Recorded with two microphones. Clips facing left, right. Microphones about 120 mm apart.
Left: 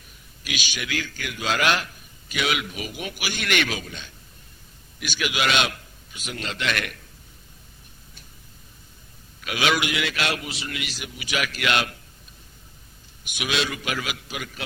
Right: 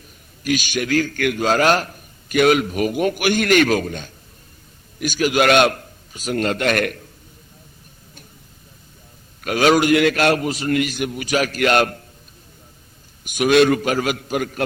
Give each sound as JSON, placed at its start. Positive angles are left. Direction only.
{"t": 0.4, "sound": "a man's voice", "side_deg": -45}
{"t": 9.4, "sound": "a man's voice", "side_deg": -45}
{"t": 13.2, "sound": "a man's voice", "side_deg": -45}